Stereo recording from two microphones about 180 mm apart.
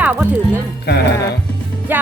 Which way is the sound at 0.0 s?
10° right (ahead or behind).